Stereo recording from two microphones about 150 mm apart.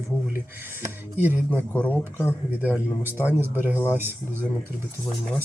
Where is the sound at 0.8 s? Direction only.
15° right (ahead or behind).